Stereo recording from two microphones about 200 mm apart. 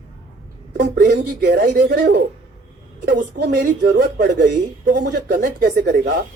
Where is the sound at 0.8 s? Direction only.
45° right (ahead or behind).